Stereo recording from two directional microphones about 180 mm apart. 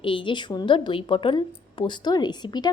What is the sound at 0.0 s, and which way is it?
A woman's voice, 30° left (ahead or behind).